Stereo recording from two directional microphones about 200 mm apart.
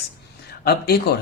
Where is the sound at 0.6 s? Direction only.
50° left (ahead or behind).